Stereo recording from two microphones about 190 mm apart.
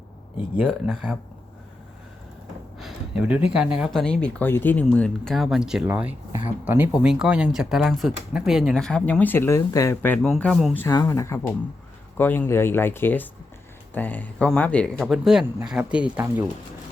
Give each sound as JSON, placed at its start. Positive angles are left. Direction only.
{"t": 0.3, "sound": "speech", "side_deg": -5}
{"t": 2.7, "sound": "speech", "side_deg": -5}
{"t": 10.8, "sound": "speech", "side_deg": 15}